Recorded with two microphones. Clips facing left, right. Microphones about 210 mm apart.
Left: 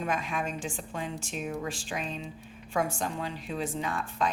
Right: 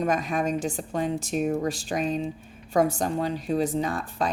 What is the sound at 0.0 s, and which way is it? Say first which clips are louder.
Speech: right 7 dB; 40° right (ahead or behind).